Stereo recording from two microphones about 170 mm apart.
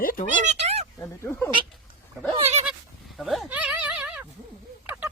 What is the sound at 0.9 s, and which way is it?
Speech, 15° left (ahead or behind).